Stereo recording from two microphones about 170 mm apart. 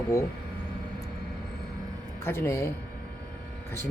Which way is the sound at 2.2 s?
15° left (ahead or behind).